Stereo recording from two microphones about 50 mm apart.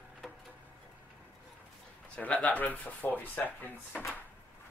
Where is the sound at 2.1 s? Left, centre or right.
Left.